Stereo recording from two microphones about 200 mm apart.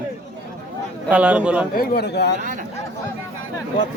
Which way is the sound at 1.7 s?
50° left (ahead or behind).